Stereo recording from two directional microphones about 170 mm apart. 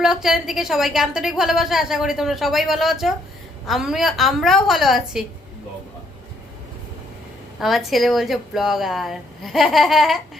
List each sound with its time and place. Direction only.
0.0 s a woman's voice: 5° right (ahead or behind)
7.6 s a woman's voice: centre (ahead or behind)